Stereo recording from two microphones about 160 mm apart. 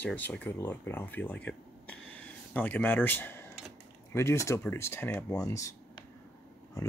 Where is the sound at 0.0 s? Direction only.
10° left (ahead or behind).